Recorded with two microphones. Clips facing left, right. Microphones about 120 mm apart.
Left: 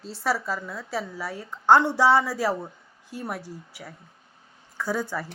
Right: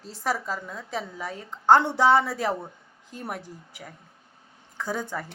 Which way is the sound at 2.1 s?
55° right (ahead or behind).